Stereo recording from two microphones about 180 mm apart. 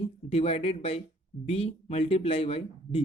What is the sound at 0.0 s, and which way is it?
Speech, 35° left (ahead or behind).